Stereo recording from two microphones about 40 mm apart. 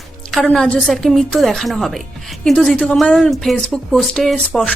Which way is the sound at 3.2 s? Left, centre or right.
Centre.